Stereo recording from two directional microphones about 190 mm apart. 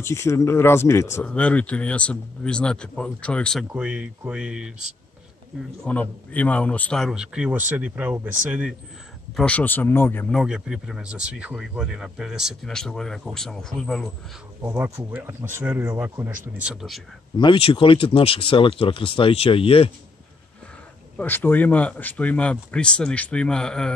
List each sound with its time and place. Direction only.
0.0 s speech: 15° left (ahead or behind)
3.6 s speech: 5° right (ahead or behind)
5.9 s speech: 10° left (ahead or behind); by 8.7 s 10° right (ahead or behind)
9.4 s speech: 5° left (ahead or behind)
10.3 s speech: 5° right (ahead or behind)
14.6 s speech: 10° right (ahead or behind)
17.4 s speech: 25° left (ahead or behind)
21.2 s speech: 10° left (ahead or behind)